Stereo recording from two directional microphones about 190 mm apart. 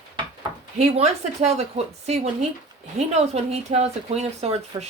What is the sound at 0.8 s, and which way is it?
Speech, 35° right (ahead or behind).